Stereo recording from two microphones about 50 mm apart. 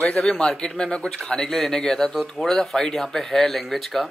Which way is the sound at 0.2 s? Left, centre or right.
Centre.